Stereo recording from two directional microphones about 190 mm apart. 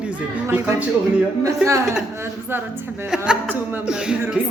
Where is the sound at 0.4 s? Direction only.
10° right (ahead or behind).